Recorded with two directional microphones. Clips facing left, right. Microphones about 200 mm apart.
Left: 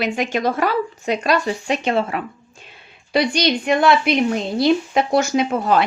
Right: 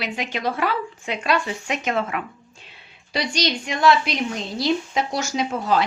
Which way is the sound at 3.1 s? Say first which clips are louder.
Left 6 dB; 55° left (ahead or behind).